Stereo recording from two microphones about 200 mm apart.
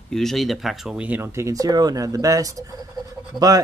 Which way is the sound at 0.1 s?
Centre (ahead or behind).